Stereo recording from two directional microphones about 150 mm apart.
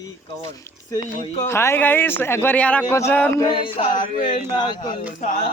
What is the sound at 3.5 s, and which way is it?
Speech, 35° left (ahead or behind).